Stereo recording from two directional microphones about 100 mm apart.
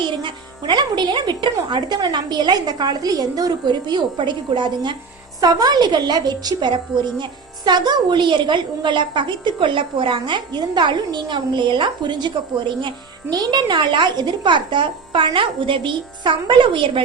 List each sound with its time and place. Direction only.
0.0 s a woman's voice: 55° right (ahead or behind)
5.4 s a woman's voice: 40° right (ahead or behind)
13.3 s a woman's voice: 40° right (ahead or behind)